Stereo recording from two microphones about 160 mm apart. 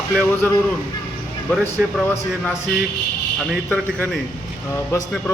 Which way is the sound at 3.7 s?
10° left (ahead or behind).